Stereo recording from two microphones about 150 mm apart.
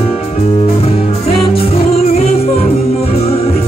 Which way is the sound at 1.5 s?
40° left (ahead or behind).